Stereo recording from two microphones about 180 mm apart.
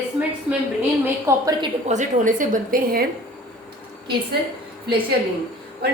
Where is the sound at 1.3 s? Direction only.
20° right (ahead or behind).